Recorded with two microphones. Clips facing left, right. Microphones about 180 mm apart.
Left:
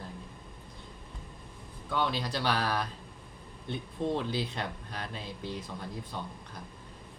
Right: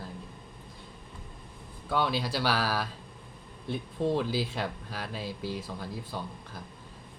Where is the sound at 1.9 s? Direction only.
10° right (ahead or behind).